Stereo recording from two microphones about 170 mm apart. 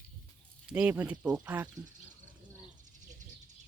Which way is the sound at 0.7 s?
10° right (ahead or behind).